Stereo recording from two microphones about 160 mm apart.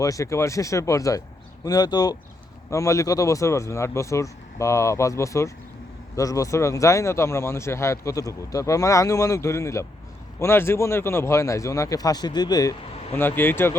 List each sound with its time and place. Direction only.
0.0 s speech: 20° left (ahead or behind)
13.1 s speech: 15° left (ahead or behind)